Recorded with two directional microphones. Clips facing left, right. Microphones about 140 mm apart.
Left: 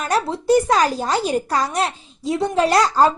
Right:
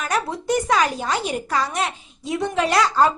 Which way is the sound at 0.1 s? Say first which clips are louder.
Left 6 dB; 30° left (ahead or behind).